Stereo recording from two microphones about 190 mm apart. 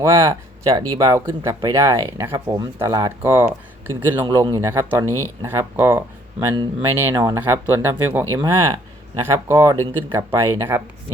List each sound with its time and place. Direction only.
0.0 s speech: 15° right (ahead or behind)